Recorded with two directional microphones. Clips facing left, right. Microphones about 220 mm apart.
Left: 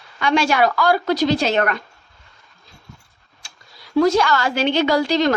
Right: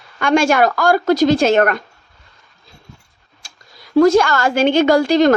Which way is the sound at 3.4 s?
40° right (ahead or behind).